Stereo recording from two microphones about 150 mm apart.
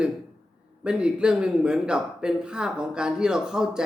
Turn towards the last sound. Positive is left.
turn(degrees=-5)  # may be behind; listen again after turning